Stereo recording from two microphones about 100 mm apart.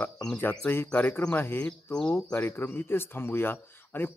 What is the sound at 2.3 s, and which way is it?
A man's voice, 20° left (ahead or behind).